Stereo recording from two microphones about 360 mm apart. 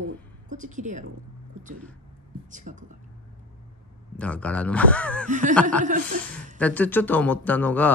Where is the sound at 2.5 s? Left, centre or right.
Right.